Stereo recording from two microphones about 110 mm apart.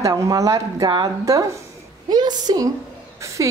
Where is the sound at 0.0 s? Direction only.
30° right (ahead or behind).